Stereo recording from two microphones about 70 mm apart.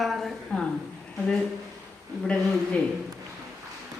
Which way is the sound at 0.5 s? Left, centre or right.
Centre.